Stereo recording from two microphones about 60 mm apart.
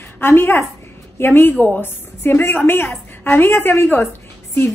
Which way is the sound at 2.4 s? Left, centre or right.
Left.